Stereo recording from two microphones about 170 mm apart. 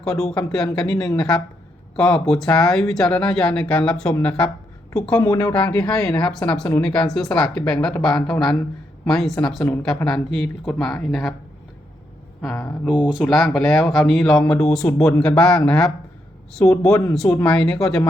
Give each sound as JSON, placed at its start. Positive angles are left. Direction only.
{"t": 0.5, "sound": "speech", "side_deg": 5}
{"t": 12.4, "sound": "speech", "side_deg": 5}
{"t": 17.1, "sound": "speech", "side_deg": 5}